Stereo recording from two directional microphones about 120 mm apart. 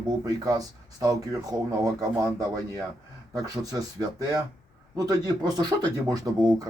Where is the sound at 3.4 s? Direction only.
30° right (ahead or behind).